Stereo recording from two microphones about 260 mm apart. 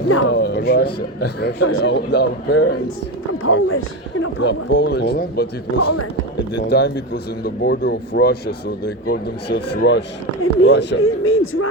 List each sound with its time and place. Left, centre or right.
0.1 s speech: left
0.3 s speech: left
5.7 s speech: left
6.7 s speech: left
10.4 s speech: left